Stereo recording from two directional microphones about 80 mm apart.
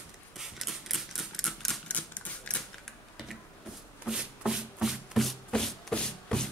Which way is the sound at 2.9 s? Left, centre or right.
Centre.